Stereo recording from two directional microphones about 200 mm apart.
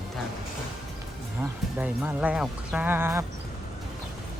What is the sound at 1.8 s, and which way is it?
Speech, 5° right (ahead or behind).